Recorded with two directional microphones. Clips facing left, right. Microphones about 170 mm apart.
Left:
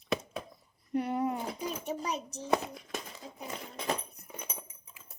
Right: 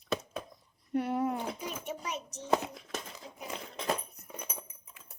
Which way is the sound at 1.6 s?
35° left (ahead or behind).